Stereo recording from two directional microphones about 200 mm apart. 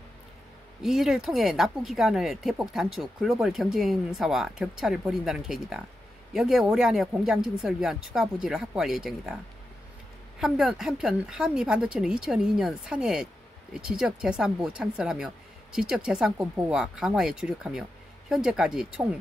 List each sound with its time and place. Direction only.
0.8 s speech: centre (ahead or behind)
10.4 s speech: centre (ahead or behind)